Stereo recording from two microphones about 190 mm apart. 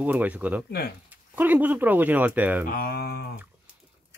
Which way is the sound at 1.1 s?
10° right (ahead or behind).